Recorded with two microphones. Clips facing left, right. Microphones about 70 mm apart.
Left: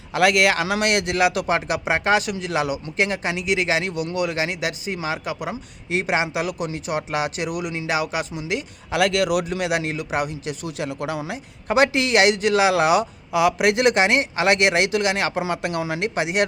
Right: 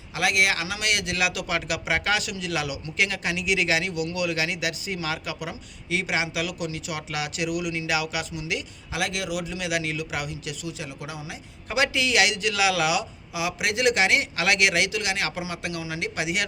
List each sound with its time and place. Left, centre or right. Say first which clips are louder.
0.1 s a man's voice: left 6 dB; left
5.9 s a man's voice: left 5 dB; left
8.9 s a man's voice: left 9 dB; left